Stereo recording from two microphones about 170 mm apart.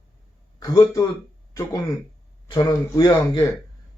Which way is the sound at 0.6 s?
20° left (ahead or behind).